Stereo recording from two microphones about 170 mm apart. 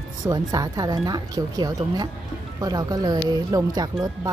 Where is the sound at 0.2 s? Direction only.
25° right (ahead or behind).